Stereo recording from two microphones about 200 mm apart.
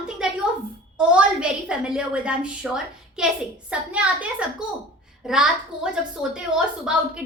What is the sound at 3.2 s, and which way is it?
A woman's voice, 5° right (ahead or behind).